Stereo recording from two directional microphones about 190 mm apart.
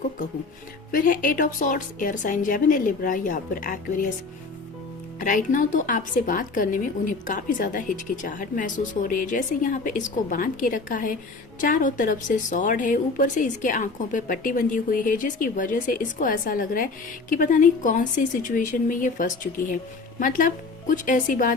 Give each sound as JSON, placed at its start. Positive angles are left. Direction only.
{"t": 0.9, "sound": "speech", "side_deg": 45}
{"t": 5.2, "sound": "speech", "side_deg": 45}